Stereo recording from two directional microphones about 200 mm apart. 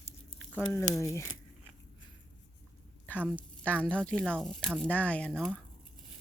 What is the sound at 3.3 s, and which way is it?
A woman's voice, 5° left (ahead or behind).